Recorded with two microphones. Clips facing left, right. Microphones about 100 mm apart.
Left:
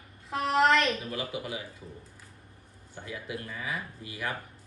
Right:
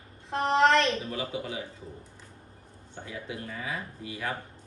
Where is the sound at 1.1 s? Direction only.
30° right (ahead or behind).